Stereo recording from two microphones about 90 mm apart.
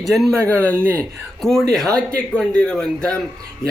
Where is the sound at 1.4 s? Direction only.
5° left (ahead or behind).